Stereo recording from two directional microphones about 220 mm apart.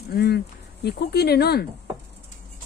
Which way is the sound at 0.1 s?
45° left (ahead or behind).